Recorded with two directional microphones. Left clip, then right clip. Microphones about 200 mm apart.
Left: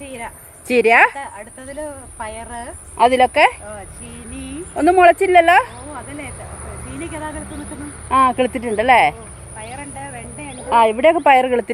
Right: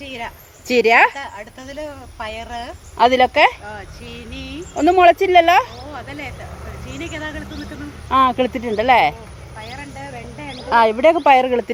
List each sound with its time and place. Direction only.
0.0 s a woman's voice: 5° left (ahead or behind)
3.0 s a woman's voice: centre (ahead or behind)
4.4 s a sound: 60° left (ahead or behind)
4.7 s a woman's voice: centre (ahead or behind)
6.1 s a sound: 55° left (ahead or behind)
6.9 s speech: 55° left (ahead or behind)
8.1 s a woman's voice: centre (ahead or behind)
9.6 s vehicle: 40° left (ahead or behind)
10.0 s a sound: 20° left (ahead or behind)
10.7 s a woman's voice: centre (ahead or behind)